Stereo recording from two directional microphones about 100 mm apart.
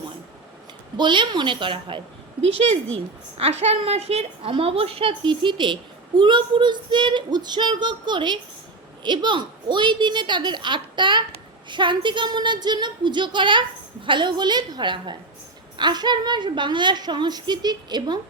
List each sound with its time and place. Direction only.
0.9 s speech: 50° right (ahead or behind)
3.3 s a woman's voice: 90° right; by 5.1 s 70° right (ahead or behind)
5.2 s speech: 50° right (ahead or behind)